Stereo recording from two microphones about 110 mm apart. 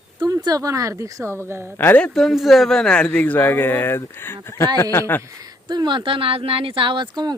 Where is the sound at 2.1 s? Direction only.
Centre (ahead or behind); by 5.2 s 20° left (ahead or behind).